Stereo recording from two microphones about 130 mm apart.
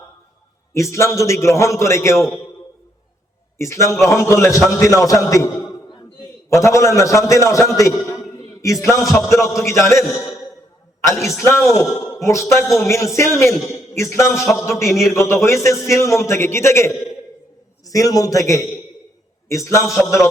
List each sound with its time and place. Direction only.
0.7 s a man's voice: 20° left (ahead or behind)
3.6 s a man's voice: 20° left (ahead or behind)
6.5 s a man's voice: 20° left (ahead or behind)
11.4 s a man's voice: 20° left (ahead or behind)